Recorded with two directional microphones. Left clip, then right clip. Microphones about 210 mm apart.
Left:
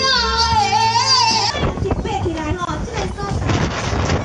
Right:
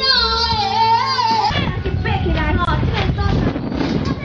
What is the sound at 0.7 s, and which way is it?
Music, 40° left (ahead or behind).